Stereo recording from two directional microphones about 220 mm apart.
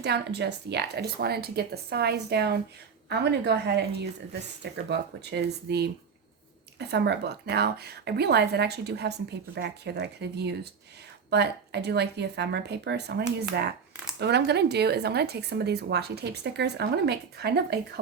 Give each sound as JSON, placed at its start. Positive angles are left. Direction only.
{"t": 0.0, "sound": "speech", "side_deg": -50}